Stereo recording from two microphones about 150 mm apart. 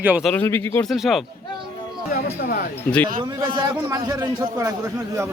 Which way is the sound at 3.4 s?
20° right (ahead or behind).